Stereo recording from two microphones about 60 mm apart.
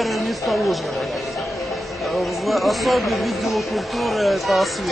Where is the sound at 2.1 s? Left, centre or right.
Centre.